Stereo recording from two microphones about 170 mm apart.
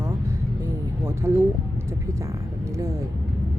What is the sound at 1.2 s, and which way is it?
Speech, 15° right (ahead or behind).